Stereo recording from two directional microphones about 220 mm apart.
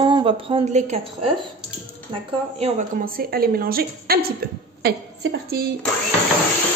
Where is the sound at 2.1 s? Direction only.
30° right (ahead or behind).